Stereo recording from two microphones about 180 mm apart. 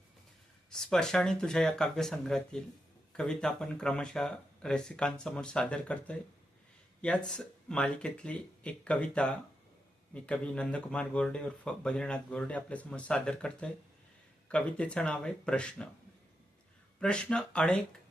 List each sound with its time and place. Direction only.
0.7 s speech: 5° left (ahead or behind)
7.3 s speech: 5° left (ahead or behind)
17.0 s speech: 5° left (ahead or behind)